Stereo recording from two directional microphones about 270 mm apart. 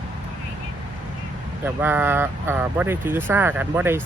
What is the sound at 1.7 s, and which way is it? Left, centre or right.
Speech, centre.